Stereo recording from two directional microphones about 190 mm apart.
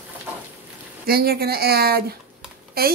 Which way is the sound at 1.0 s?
55° right (ahead or behind).